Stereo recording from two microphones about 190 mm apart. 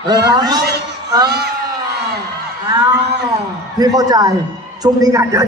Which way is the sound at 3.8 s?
20° right (ahead or behind).